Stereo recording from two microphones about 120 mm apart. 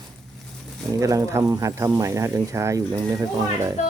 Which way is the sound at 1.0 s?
25° right (ahead or behind).